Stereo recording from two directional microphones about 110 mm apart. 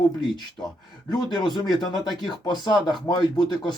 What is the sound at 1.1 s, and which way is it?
Speech, 40° left (ahead or behind).